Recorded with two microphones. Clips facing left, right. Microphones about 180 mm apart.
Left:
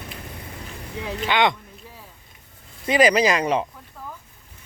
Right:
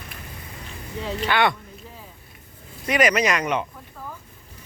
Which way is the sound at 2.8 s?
30° left (ahead or behind).